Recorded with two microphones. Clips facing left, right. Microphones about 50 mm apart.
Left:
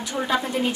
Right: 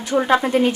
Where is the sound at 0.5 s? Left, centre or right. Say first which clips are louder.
Right 8 dB; right.